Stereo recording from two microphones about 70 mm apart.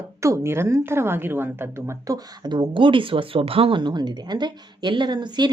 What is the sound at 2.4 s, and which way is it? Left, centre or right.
Speech, right.